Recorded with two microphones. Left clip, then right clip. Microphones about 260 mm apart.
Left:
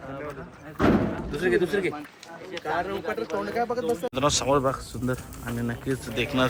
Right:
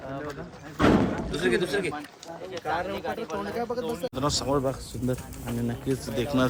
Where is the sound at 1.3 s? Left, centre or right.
Left.